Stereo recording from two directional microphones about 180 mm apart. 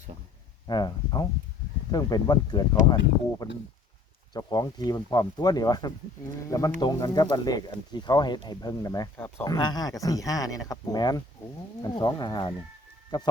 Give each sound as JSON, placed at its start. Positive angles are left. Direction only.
{"t": 0.7, "sound": "speech", "side_deg": 20}